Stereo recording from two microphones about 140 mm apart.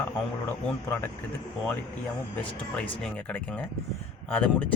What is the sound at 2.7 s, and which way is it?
Speech, 10° left (ahead or behind).